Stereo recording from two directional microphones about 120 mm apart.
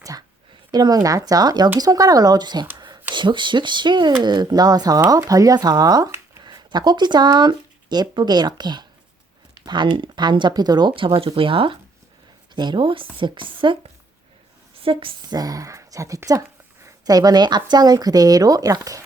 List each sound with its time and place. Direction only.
0.7 s speech: 35° right (ahead or behind)
2.7 s a sound: 35° right (ahead or behind)
3.2 s speech: 40° right (ahead or behind)
14.8 s speech: 45° right (ahead or behind)
15.4 s speech: 30° right (ahead or behind)